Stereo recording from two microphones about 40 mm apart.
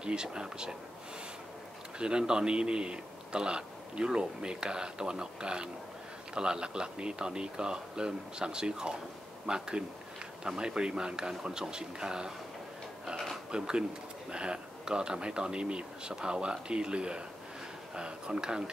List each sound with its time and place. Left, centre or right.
0.0 s a man's voice: right
2.0 s a man's voice: right
13.1 s speech: centre
13.5 s a man's voice: right